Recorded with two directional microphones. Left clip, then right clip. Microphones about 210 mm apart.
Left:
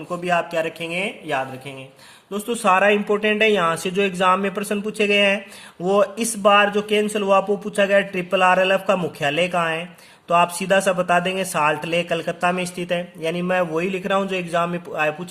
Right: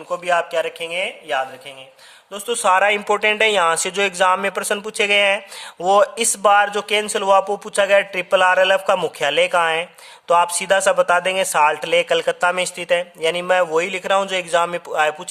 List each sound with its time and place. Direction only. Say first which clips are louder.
0.1 s speech: right 2 dB; 30° right (ahead or behind)
2.3 s speech: right 2 dB; 35° right (ahead or behind)